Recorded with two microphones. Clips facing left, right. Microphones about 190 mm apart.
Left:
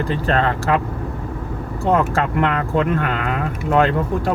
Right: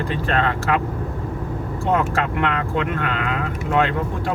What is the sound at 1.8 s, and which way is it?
Speech, 40° left (ahead or behind).